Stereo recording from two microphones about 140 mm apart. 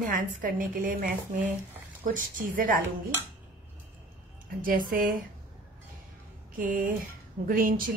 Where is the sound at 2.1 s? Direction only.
80° right.